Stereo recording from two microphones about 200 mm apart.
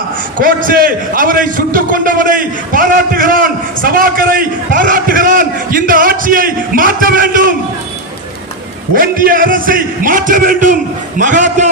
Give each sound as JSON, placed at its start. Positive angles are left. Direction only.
{"t": 0.3, "sound": "a man's voice", "side_deg": -45}
{"t": 9.0, "sound": "a man's voice", "side_deg": -45}